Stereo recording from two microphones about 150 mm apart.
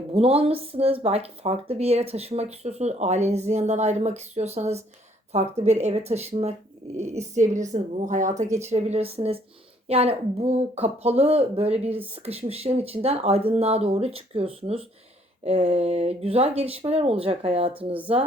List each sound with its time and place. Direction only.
0.1 s speech: 40° right (ahead or behind)